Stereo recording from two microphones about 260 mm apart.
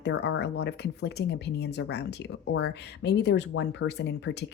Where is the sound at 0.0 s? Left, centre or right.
Left.